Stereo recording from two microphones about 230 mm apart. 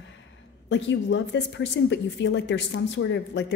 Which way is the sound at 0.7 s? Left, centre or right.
Left.